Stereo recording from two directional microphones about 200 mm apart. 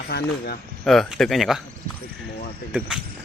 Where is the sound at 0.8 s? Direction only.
Centre (ahead or behind).